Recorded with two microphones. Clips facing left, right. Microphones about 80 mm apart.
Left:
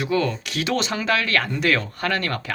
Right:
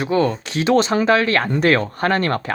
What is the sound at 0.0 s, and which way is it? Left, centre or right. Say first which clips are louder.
Speech: right 4 dB; right.